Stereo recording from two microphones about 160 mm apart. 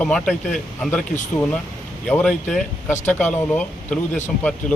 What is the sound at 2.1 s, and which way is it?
A man's voice, 5° left (ahead or behind).